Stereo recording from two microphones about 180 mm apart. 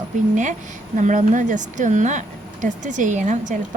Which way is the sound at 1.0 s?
45° right (ahead or behind).